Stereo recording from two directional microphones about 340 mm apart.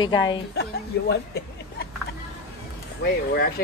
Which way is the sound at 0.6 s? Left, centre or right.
Left.